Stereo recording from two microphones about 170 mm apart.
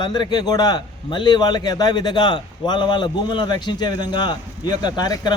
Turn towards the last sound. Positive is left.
turn(degrees=25)  # may be behind; listen again after turning